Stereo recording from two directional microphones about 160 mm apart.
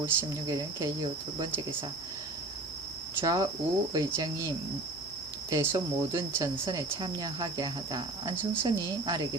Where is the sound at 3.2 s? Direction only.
25° right (ahead or behind).